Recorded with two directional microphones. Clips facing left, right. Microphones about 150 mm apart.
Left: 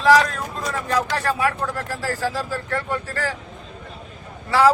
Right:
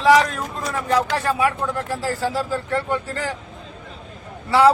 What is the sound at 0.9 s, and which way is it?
Speech, 15° right (ahead or behind).